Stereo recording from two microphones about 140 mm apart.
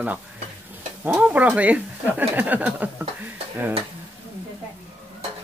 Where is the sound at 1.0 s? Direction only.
10° right (ahead or behind).